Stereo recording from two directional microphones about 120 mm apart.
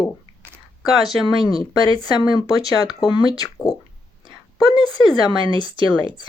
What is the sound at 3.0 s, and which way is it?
Speech, 35° left (ahead or behind).